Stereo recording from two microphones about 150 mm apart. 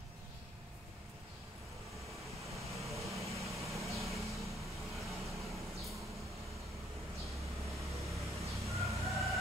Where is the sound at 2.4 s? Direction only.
20° right (ahead or behind).